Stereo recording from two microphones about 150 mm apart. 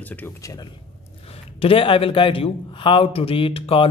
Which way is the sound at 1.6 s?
40° left (ahead or behind).